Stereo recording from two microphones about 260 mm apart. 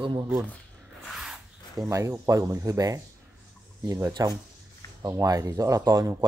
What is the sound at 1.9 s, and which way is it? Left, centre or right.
Speech, centre.